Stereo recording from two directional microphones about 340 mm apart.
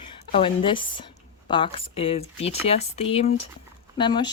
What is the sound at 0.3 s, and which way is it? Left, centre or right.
Speech, centre.